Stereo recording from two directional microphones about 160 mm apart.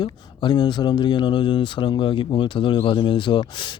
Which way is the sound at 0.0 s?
30° left (ahead or behind).